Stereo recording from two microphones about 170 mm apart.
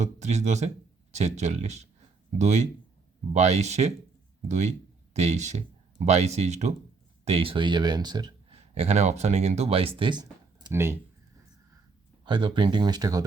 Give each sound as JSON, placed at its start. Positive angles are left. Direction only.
{"t": 0.0, "sound": "speech", "side_deg": -40}
{"t": 8.5, "sound": "speech", "side_deg": -40}
{"t": 10.7, "sound": "speech", "side_deg": -15}
{"t": 12.2, "sound": "speech", "side_deg": -30}